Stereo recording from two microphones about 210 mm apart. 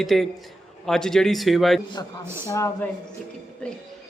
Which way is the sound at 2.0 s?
15° left (ahead or behind).